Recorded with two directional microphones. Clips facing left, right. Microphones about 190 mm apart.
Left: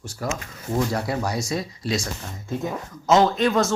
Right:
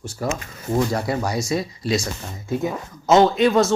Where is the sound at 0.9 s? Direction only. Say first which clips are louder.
Right 2 dB; centre (ahead or behind).